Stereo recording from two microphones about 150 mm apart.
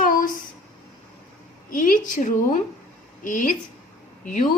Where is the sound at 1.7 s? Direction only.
60° left (ahead or behind).